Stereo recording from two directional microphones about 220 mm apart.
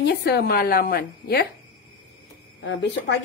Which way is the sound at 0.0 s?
50° left (ahead or behind).